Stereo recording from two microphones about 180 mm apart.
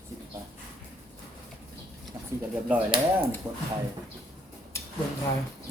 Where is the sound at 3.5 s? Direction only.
20° right (ahead or behind).